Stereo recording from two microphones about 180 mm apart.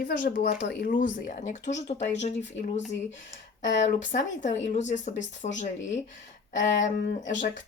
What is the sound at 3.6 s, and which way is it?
Speech, 45° left (ahead or behind).